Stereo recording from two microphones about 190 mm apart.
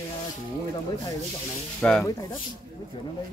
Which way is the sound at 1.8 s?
5° left (ahead or behind).